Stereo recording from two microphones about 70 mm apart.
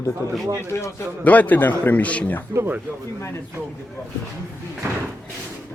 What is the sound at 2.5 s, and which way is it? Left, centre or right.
Speech, right.